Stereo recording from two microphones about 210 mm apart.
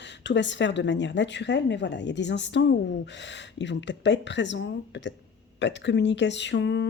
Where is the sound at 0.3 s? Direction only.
60° left (ahead or behind).